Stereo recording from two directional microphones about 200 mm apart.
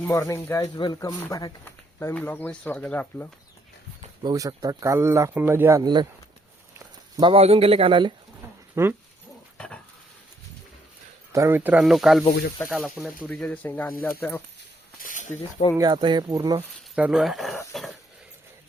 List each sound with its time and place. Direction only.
0.0 s speech: 15° left (ahead or behind)
4.2 s speech: 20° right (ahead or behind)
8.7 s speech: 10° right (ahead or behind)
11.3 s speech: 15° right (ahead or behind); by 14.4 s 10° left (ahead or behind)
15.0 s speech: 40° left (ahead or behind)
15.8 s speech: 25° right (ahead or behind)
16.9 s speech: 5° right (ahead or behind)